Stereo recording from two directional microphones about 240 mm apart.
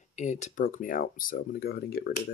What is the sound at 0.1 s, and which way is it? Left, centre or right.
Speech, left.